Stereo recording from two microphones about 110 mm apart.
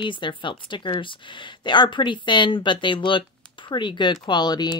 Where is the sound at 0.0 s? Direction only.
45° left (ahead or behind).